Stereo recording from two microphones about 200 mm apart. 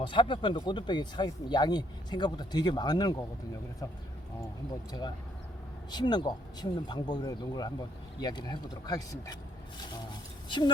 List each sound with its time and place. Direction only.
0.0 s speech: 25° left (ahead or behind)
4.9 s speech: 20° left (ahead or behind)